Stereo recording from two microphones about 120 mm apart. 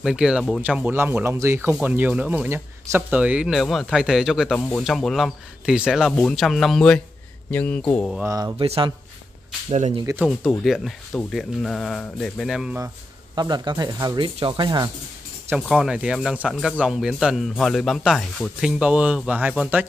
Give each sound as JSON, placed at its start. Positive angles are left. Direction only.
{"t": 0.0, "sound": "speech", "side_deg": -5}
{"t": 4.6, "sound": "speech", "side_deg": 10}
{"t": 8.2, "sound": "speech", "side_deg": -25}
{"t": 8.5, "sound": "speech", "side_deg": -45}
{"t": 9.7, "sound": "speech", "side_deg": -65}
{"t": 10.6, "sound": "speech", "side_deg": 0}
{"t": 12.7, "sound": "a sound", "side_deg": -25}
{"t": 13.4, "sound": "speech", "side_deg": -35}
{"t": 15.5, "sound": "speech", "side_deg": -5}